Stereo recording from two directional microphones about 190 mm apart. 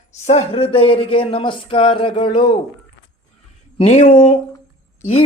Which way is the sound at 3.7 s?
35° left (ahead or behind).